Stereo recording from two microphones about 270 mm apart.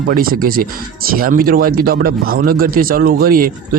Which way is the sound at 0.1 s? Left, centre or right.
Right.